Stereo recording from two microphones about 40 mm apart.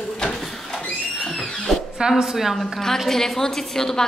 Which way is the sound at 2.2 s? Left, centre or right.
Centre.